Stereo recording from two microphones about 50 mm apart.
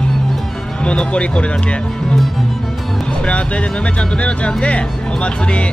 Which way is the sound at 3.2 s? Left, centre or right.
Left.